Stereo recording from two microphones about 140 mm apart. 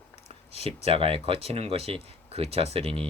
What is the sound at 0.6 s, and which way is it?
Speech, 45° right (ahead or behind).